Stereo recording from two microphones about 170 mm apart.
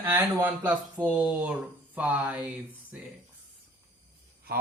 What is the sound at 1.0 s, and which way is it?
Speech, 10° right (ahead or behind).